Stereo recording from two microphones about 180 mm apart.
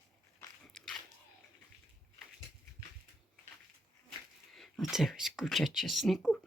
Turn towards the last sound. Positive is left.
turn(degrees=0)  # may be behind; listen again after turning